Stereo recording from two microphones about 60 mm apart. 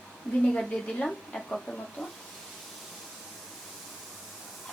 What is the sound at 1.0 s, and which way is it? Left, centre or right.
Speech, centre.